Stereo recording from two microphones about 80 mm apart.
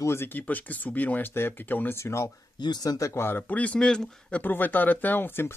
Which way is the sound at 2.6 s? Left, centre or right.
Left.